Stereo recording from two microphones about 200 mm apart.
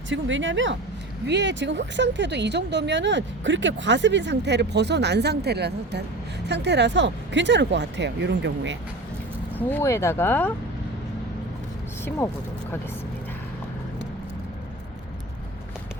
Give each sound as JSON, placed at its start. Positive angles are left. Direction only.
{"t": 0.1, "sound": "speech", "side_deg": -70}
{"t": 9.6, "sound": "speech", "side_deg": 10}